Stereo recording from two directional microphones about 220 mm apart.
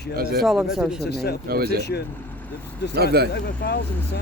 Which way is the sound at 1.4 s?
45° right (ahead or behind).